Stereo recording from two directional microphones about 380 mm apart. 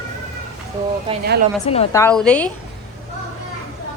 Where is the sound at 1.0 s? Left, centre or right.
Centre.